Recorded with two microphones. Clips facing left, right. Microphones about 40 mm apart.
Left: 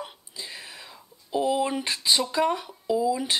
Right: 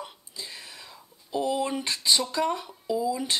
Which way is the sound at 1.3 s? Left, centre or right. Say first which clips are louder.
Left 3 dB; centre.